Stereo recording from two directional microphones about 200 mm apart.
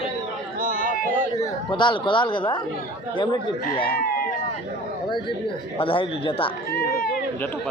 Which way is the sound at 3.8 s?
50° left (ahead or behind).